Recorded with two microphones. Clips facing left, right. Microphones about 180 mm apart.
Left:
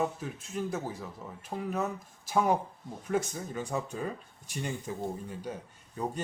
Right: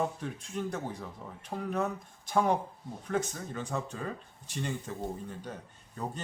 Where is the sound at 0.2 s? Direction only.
5° left (ahead or behind).